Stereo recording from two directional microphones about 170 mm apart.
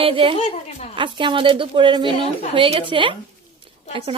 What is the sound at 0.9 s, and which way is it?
A woman's voice, 30° right (ahead or behind).